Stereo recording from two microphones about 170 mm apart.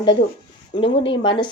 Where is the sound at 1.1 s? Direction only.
30° left (ahead or behind).